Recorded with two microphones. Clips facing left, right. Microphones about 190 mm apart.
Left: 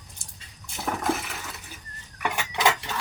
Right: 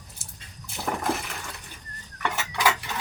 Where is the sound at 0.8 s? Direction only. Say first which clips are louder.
Left 1 dB; centre (ahead or behind).